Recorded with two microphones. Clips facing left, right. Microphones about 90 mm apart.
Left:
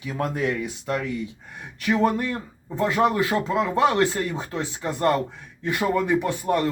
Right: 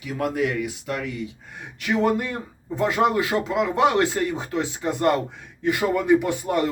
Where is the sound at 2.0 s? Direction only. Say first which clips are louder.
Right 1 dB; 20° right (ahead or behind).